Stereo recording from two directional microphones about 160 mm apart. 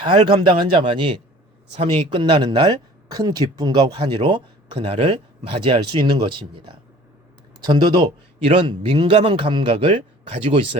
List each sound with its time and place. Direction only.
0.0 s speech: 30° right (ahead or behind)